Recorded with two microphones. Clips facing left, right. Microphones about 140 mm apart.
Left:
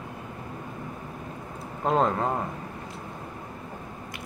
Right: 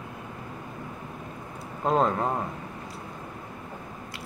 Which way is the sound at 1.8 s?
20° left (ahead or behind).